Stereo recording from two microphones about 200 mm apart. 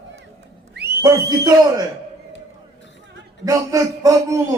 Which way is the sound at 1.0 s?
15° right (ahead or behind).